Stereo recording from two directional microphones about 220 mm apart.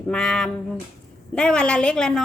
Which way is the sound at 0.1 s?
5° left (ahead or behind).